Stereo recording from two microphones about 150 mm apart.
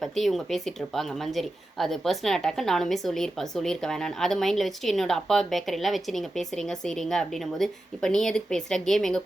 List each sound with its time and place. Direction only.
0.0 s speech: centre (ahead or behind)